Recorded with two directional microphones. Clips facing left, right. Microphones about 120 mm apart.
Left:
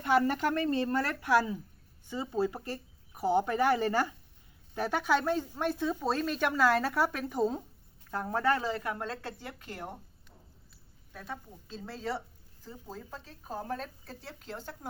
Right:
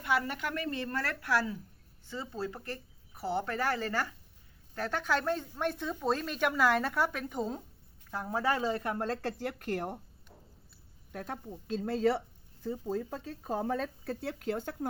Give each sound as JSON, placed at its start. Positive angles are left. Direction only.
{"t": 0.0, "sound": "a woman's voice", "side_deg": 40}
{"t": 11.1, "sound": "speech", "side_deg": -55}